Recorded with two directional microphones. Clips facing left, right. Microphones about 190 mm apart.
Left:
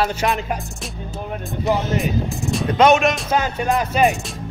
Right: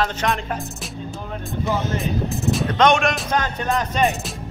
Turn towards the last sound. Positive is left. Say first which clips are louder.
# left 3 dB
turn(degrees=10)  # may be behind; listen again after turning